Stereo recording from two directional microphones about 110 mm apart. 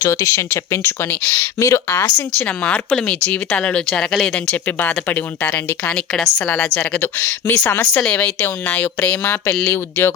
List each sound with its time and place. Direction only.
0.0 s a woman's voice: 25° left (ahead or behind)
1.5 s a woman's voice: 25° left (ahead or behind)
2.4 s a woman's voice: 10° left (ahead or behind)
8.0 s a woman's voice: 10° left (ahead or behind)